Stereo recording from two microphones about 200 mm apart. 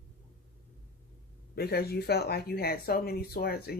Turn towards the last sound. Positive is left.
turn(degrees=50)  # may be behind; listen again after turning